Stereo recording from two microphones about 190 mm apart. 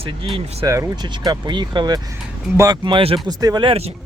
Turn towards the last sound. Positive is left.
turn(degrees=-30)  # may be behind; listen again after turning